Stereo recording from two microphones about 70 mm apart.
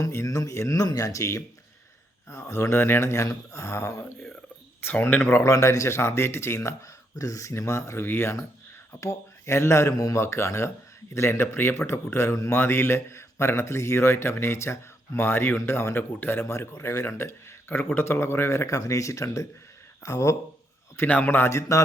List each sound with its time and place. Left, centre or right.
0.0 s a man's voice: left
0.3 s speech: left
2.5 s a man's voice: left
4.9 s speech: left
5.4 s a man's voice: left
7.2 s speech: left
8.0 s a man's voice: left
16.5 s a man's voice: left
21.1 s speech: centre
21.3 s a man's voice: left